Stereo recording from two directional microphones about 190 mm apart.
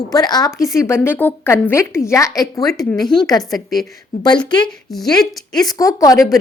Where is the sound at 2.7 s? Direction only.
Centre (ahead or behind).